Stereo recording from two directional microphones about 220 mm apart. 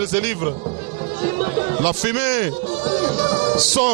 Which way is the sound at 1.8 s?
10° right (ahead or behind).